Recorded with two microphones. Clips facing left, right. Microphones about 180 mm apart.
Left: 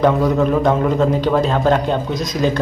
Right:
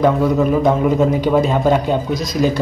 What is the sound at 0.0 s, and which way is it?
Speech, 5° right (ahead or behind).